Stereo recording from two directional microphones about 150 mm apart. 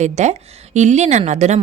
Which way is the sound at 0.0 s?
50° right (ahead or behind).